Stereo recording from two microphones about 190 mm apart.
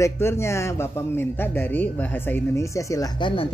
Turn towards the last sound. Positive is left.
turn(degrees=25)  # may be behind; listen again after turning